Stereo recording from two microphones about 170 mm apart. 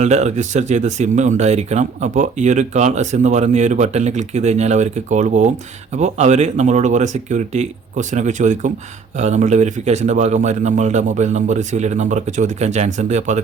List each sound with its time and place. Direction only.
0.0 s speech: 40° right (ahead or behind)